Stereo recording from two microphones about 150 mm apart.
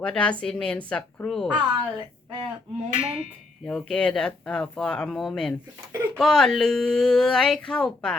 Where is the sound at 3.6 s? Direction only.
5° left (ahead or behind).